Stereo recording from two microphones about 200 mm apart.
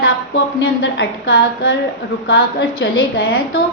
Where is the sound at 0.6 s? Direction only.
55° left (ahead or behind).